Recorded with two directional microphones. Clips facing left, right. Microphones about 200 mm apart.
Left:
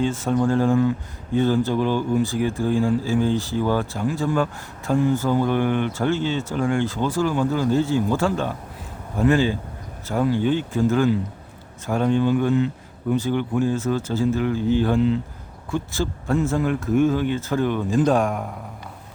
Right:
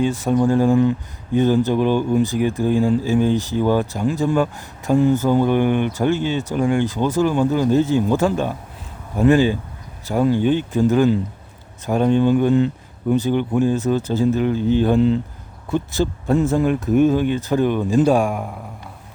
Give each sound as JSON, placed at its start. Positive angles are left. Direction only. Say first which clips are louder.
{"t": 0.0, "sound": "speech", "louder": "right 3 dB", "side_deg": -15}
{"t": 13.1, "sound": "speech", "louder": "right 3 dB", "side_deg": -20}
{"t": 14.9, "sound": "speech", "louder": "right 4 dB", "side_deg": -30}
{"t": 15.7, "sound": "speech", "louder": "right 5 dB", "side_deg": -20}